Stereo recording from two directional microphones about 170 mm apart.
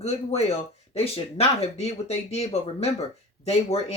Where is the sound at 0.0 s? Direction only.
40° left (ahead or behind).